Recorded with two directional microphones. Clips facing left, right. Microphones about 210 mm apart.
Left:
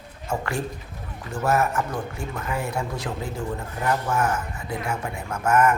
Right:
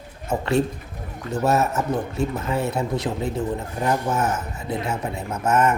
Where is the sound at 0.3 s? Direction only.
20° right (ahead or behind).